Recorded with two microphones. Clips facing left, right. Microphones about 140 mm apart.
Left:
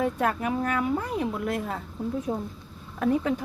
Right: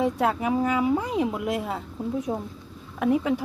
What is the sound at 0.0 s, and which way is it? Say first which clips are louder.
Speech: right 2 dB; 10° right (ahead or behind).